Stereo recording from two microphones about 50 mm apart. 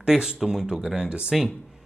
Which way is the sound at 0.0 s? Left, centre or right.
Centre.